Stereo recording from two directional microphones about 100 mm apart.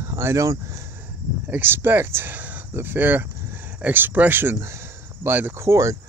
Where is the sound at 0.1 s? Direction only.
30° right (ahead or behind).